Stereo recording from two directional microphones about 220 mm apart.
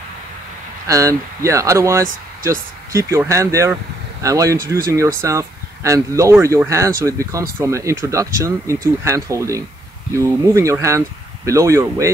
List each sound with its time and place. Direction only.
0.8 s speech: 15° right (ahead or behind)